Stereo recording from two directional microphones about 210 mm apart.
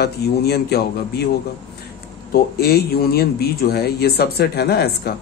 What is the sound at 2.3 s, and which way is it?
Speech, 50° left (ahead or behind).